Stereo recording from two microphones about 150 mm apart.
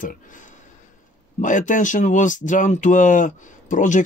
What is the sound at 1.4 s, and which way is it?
Speech, 60° left (ahead or behind).